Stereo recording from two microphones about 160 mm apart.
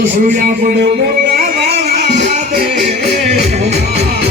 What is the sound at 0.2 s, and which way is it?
Speech, 60° right (ahead or behind).